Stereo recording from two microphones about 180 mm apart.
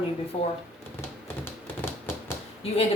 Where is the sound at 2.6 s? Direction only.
35° left (ahead or behind).